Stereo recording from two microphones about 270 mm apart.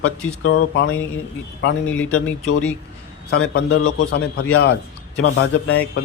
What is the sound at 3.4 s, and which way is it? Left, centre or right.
A man's voice, left.